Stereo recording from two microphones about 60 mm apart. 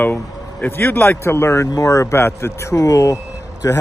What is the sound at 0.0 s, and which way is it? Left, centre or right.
Speech, left.